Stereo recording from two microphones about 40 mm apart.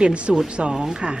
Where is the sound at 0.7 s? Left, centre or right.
Centre.